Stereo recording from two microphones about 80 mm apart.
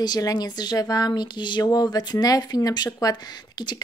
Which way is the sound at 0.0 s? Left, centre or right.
Left.